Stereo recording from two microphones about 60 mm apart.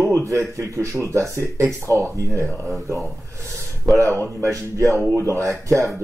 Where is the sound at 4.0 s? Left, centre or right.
Right.